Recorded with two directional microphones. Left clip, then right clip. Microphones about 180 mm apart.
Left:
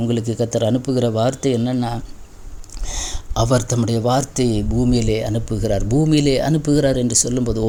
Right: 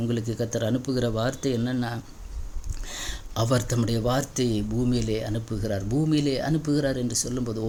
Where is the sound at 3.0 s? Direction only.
15° left (ahead or behind).